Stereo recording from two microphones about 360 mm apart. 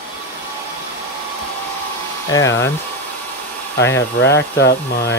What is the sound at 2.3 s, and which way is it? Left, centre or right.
Speech, centre.